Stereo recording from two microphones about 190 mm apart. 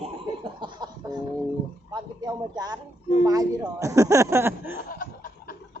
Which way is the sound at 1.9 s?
20° right (ahead or behind).